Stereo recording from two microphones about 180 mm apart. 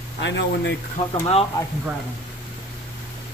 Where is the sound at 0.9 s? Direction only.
35° left (ahead or behind).